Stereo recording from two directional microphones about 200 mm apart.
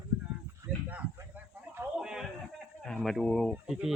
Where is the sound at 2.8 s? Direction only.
5° left (ahead or behind).